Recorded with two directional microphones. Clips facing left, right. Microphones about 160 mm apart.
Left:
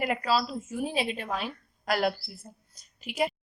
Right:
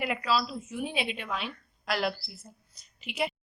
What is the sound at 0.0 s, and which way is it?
Speech, 40° left (ahead or behind).